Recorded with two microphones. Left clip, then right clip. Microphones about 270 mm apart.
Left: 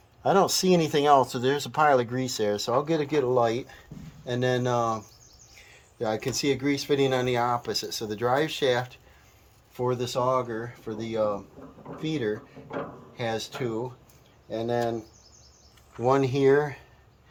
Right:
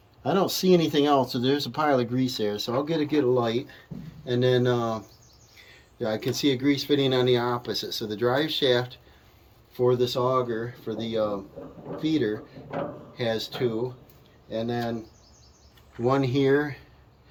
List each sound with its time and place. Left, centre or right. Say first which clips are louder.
0.2 s speech: left 3 dB; centre
16.0 s speech: left 1 dB; centre